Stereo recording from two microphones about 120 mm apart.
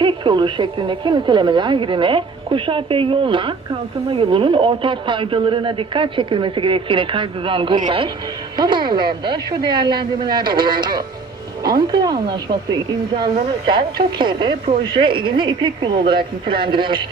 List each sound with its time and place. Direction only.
0.0 s a woman's voice: 40° right (ahead or behind)
13.7 s speech: 40° right (ahead or behind)